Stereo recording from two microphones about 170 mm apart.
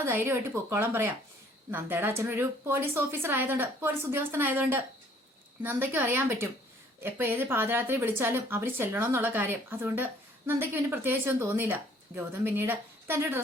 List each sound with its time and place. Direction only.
0.0 s a woman's voice: 15° right (ahead or behind)